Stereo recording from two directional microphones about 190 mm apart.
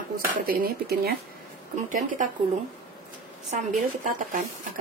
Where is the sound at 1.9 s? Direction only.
45° right (ahead or behind).